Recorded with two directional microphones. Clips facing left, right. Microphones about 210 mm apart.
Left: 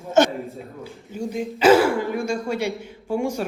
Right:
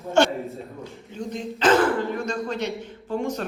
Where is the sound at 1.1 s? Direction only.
10° left (ahead or behind).